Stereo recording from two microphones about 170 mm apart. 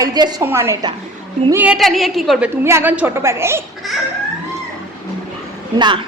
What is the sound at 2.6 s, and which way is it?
Speech, 15° right (ahead or behind).